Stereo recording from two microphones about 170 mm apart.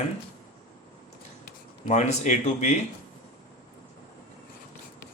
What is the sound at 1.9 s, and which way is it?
Speech, 40° left (ahead or behind).